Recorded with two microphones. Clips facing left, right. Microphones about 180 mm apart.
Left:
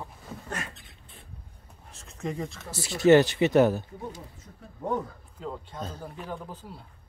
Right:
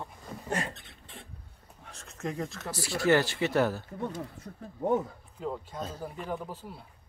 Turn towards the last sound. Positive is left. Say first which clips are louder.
# right 2 dB
turn(degrees=-5)  # may be behind; listen again after turning